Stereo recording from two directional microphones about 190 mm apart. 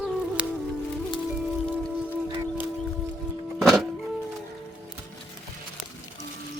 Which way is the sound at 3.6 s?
Centre (ahead or behind).